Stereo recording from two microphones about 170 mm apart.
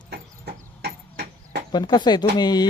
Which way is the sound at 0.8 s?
75° right (ahead or behind).